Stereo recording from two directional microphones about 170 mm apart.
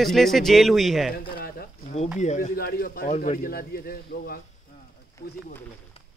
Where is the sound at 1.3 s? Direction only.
60° left (ahead or behind).